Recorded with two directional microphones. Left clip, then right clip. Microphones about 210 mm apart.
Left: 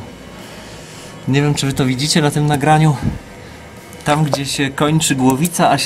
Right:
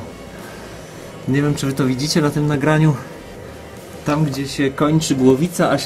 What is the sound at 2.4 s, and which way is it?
Speech, 35° left (ahead or behind).